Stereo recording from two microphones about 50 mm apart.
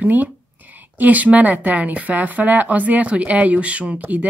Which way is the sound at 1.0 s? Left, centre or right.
Right.